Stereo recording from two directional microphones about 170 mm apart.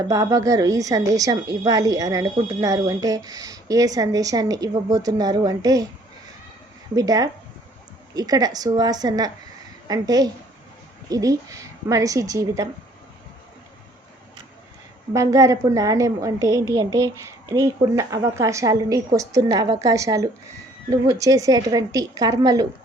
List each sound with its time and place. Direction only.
0.0 s a woman's voice: 20° right (ahead or behind)
6.9 s a woman's voice: 20° right (ahead or behind)
15.1 s a woman's voice: 20° right (ahead or behind)